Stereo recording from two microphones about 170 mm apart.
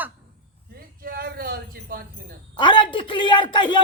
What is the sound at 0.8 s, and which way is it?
Speech, 60° right (ahead or behind).